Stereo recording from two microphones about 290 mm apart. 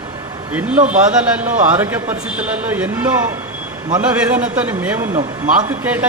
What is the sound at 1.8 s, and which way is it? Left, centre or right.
A man's voice, centre.